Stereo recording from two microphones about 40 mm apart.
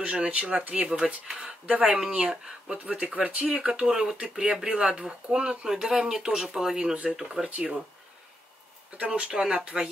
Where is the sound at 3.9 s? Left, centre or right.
Centre.